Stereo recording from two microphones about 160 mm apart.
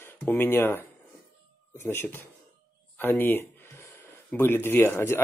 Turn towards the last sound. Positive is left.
turn(degrees=15)  # may be behind; listen again after turning